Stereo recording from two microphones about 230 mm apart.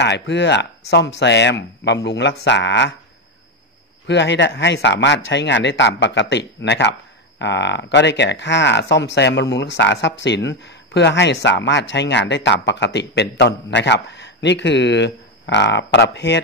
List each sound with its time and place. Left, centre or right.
0.0 s speech: left
4.1 s speech: left